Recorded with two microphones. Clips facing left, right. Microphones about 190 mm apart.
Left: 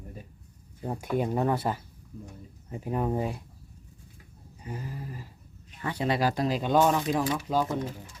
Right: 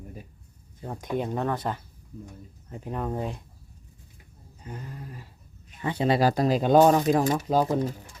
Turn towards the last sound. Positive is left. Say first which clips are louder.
# right 4 dB
turn(degrees=-40)  # may be behind; listen again after turning